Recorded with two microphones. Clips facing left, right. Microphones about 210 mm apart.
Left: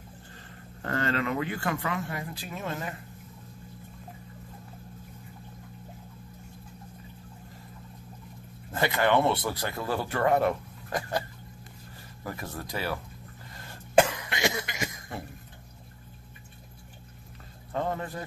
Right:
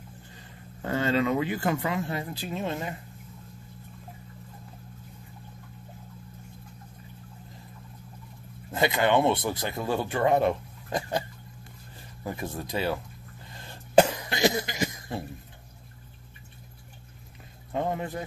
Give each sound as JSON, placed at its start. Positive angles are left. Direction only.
{"t": 0.3, "sound": "speech", "side_deg": -10}
{"t": 8.7, "sound": "speech", "side_deg": -15}
{"t": 13.9, "sound": "cough", "side_deg": -35}
{"t": 17.7, "sound": "a man's voice", "side_deg": -15}